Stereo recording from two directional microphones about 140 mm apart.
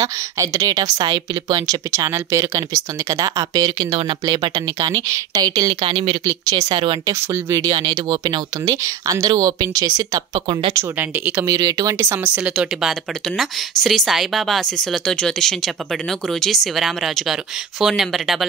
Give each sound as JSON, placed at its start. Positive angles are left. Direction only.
{"t": 0.0, "sound": "speech", "side_deg": -25}
{"t": 7.1, "sound": "speech", "side_deg": -20}
{"t": 10.8, "sound": "speech", "side_deg": -15}
{"t": 11.4, "sound": "a woman's voice", "side_deg": -25}